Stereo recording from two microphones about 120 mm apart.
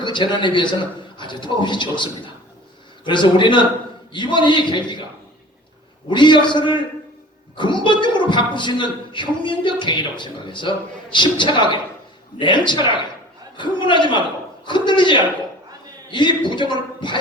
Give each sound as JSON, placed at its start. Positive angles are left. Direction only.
{"t": 0.0, "sound": "a man's voice", "side_deg": 40}
{"t": 6.1, "sound": "a man's voice", "side_deg": 40}